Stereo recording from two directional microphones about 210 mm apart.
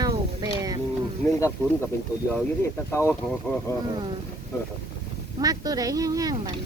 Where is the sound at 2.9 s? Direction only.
10° left (ahead or behind).